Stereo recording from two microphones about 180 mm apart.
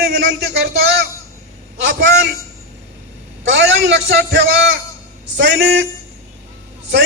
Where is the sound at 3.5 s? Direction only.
80° right.